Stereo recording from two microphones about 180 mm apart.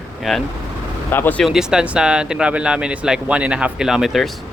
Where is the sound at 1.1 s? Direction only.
10° left (ahead or behind).